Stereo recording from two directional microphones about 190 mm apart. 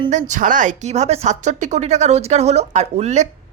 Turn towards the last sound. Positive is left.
turn(degrees=-35)  # may be behind; listen again after turning